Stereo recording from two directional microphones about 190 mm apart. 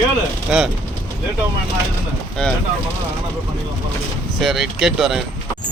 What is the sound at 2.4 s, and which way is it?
Speech, 5° left (ahead or behind).